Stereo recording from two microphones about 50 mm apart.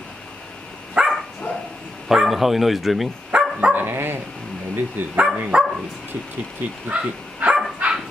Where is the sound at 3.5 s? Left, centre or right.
Right.